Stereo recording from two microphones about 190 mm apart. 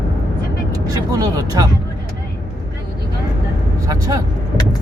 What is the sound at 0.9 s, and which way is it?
Vehicle, 20° right (ahead or behind).